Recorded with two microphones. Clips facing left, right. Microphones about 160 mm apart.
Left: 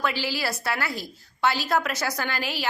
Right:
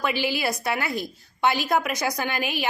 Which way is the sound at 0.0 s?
15° right (ahead or behind).